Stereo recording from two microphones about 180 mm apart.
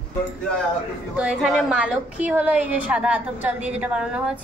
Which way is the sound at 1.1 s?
5° right (ahead or behind).